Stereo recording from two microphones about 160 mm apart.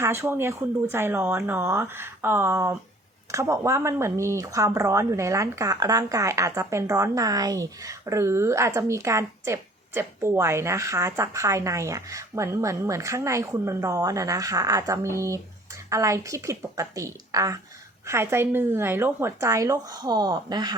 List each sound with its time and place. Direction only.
0.0 s speech: 15° right (ahead or behind)